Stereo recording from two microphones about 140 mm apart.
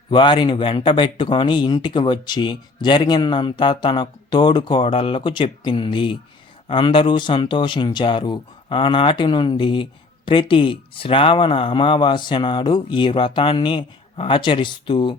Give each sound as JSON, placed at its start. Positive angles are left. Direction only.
{"t": 0.1, "sound": "speech", "side_deg": 35}